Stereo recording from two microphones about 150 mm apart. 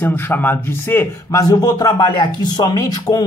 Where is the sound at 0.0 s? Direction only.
15° left (ahead or behind).